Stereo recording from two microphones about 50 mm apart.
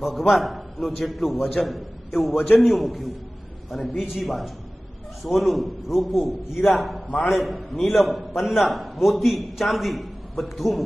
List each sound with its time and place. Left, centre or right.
0.0 s a man's voice: centre
2.3 s a man's voice: left
2.6 s a man's voice: centre